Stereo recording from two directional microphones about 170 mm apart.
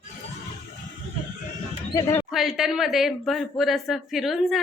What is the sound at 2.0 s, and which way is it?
Speech, 20° left (ahead or behind).